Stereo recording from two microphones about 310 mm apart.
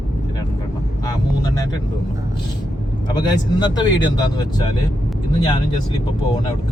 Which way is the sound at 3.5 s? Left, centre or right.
Centre.